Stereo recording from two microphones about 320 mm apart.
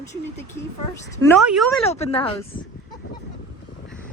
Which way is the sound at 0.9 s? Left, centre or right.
Centre.